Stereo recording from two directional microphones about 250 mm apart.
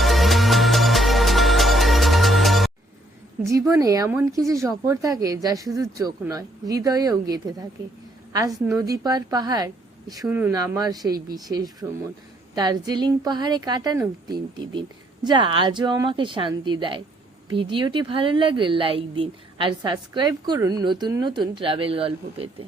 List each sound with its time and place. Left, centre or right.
0.0 s music: centre
3.7 s a woman's voice: centre